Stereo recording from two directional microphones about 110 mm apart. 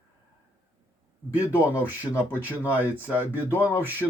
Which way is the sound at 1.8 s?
15° right (ahead or behind).